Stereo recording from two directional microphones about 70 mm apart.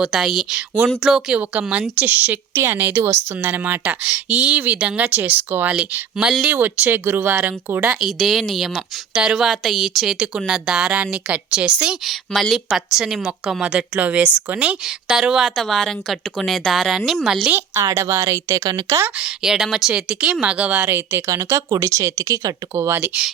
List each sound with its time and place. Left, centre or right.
0.0 s a woman's voice: centre
0.9 s a woman's voice: centre
2.0 s speech: right
2.5 s speech: right
7.8 s a woman's voice: centre
12.0 s a woman's voice: centre
17.7 s speech: right
19.2 s a woman's voice: centre
20.8 s speech: right
21.2 s speech: right